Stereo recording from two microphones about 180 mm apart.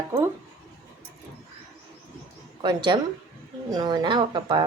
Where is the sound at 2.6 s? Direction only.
25° right (ahead or behind).